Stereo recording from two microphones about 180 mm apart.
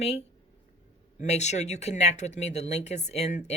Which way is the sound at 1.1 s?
40° left (ahead or behind).